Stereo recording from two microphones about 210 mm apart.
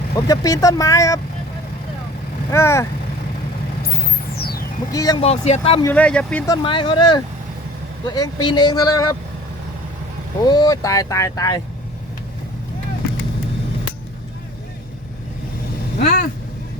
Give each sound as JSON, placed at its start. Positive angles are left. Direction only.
{"t": 0.2, "sound": "speech", "side_deg": 15}
{"t": 2.5, "sound": "speech", "side_deg": 15}
{"t": 4.4, "sound": "a sound", "side_deg": 45}
{"t": 4.9, "sound": "speech", "side_deg": 15}
{"t": 5.8, "sound": "speech", "side_deg": 5}
{"t": 6.5, "sound": "speech", "side_deg": 25}
{"t": 10.4, "sound": "speech", "side_deg": 20}
{"t": 16.0, "sound": "vehicle", "side_deg": 45}